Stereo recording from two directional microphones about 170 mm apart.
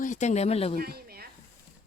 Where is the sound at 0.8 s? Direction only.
65° right (ahead or behind).